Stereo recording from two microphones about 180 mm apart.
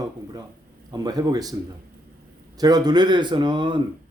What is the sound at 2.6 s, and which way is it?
A man's voice, 20° right (ahead or behind).